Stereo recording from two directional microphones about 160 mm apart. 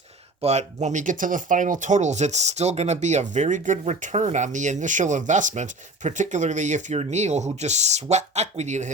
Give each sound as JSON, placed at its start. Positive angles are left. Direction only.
{"t": 0.4, "sound": "speech", "side_deg": -45}